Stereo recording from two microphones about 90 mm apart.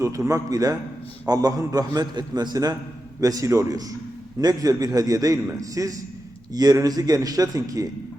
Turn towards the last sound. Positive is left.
turn(degrees=-40)  # may be behind; listen again after turning